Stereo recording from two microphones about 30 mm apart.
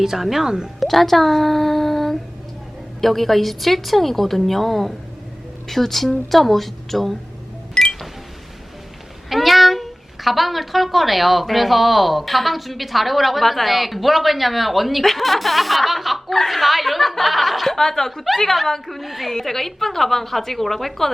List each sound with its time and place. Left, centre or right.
0.0 s speech: centre
0.4 s speech: right
0.8 s a child's voice: centre
7.7 s cash register: left
9.3 s speech: centre
17.7 s a woman's voice: centre
19.3 s a woman's voice: centre